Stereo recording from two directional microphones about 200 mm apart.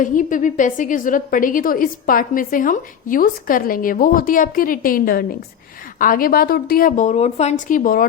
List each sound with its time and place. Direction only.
0.0 s a woman's voice: 40° left (ahead or behind)